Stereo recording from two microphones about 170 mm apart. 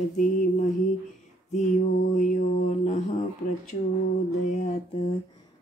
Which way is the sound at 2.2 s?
45° left (ahead or behind).